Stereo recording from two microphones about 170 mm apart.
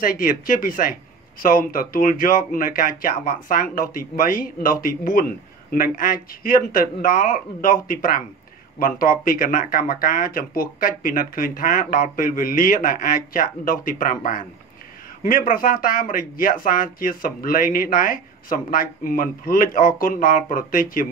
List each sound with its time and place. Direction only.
0.0 s speech: 55° left (ahead or behind)